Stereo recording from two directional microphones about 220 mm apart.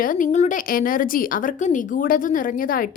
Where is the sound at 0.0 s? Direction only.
40° left (ahead or behind).